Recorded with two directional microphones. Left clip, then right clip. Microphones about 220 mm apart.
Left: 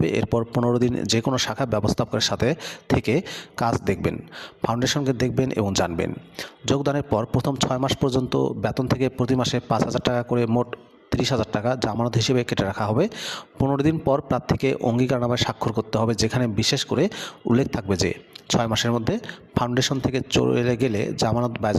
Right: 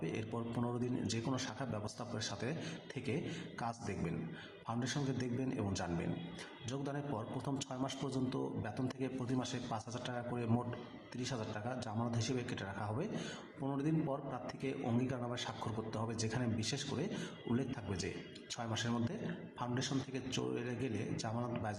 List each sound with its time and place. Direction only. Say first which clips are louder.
0.0 s speech: left 19 dB; 50° left (ahead or behind)